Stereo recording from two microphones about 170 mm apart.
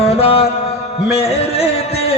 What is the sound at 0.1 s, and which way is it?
Mantra, 35° left (ahead or behind).